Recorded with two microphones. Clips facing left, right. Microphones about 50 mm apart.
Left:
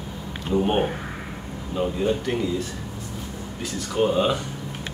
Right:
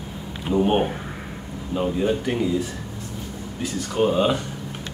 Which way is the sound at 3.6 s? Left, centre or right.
Centre.